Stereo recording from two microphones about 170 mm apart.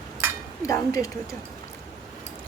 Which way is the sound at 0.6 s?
20° left (ahead or behind).